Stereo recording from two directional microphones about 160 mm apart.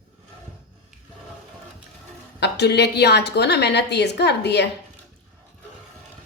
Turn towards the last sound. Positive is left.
turn(degrees=90)